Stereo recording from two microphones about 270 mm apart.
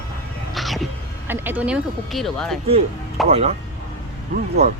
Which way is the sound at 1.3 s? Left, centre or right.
Centre.